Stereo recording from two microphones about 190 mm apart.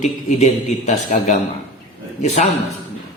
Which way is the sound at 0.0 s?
40° left (ahead or behind).